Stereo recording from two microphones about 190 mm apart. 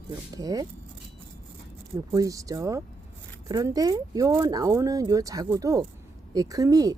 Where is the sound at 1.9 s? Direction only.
15° right (ahead or behind).